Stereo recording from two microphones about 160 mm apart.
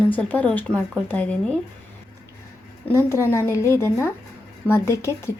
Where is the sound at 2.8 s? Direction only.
15° left (ahead or behind).